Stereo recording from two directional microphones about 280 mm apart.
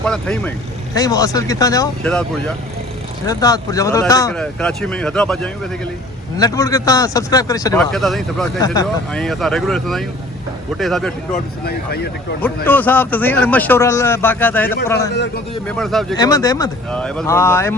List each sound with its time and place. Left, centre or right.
0.0 s a man's voice: centre
8.6 s a man's voice: centre
9.2 s speech: centre
11.3 s speech: left
12.6 s a man's voice: centre
16.1 s a man's voice: centre